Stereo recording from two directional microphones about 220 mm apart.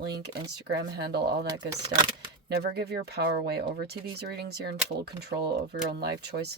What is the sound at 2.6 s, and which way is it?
Speech, 45° right (ahead or behind).